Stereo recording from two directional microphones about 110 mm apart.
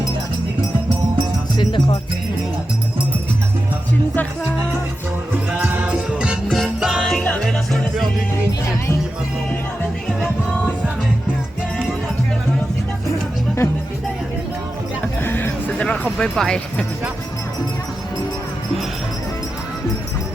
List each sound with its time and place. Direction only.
1.5 s music: 45° left (ahead or behind)
5.6 s music: 15° right (ahead or behind); by 8.0 s 5° left (ahead or behind)
13.6 s music: 25° left (ahead or behind)
15.0 s music: 20° left (ahead or behind)
16.1 s speech: 5° left (ahead or behind)